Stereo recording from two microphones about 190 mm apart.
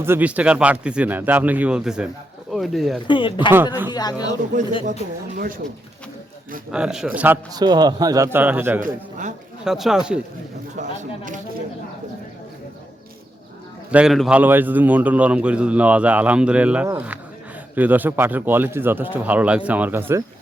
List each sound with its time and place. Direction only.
0.0 s a man's voice: 10° right (ahead or behind)
3.1 s speech: 25° left (ahead or behind)
4.5 s speech: 40° right (ahead or behind)
6.7 s speech: 5° right (ahead or behind)
7.5 s a man's voice: 20° right (ahead or behind)
8.8 s a man's voice: 40° right (ahead or behind)
9.6 s speech: centre (ahead or behind)
10.8 s speech: 40° right (ahead or behind)
13.9 s a man's voice: centre (ahead or behind)